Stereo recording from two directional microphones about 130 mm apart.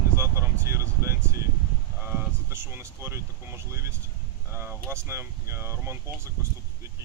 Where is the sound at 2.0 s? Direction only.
15° right (ahead or behind).